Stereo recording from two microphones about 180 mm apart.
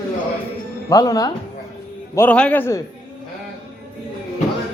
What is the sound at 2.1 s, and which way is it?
Speech, 10° left (ahead or behind).